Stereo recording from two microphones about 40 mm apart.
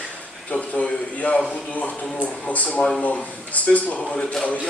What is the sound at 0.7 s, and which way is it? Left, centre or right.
Speech, left.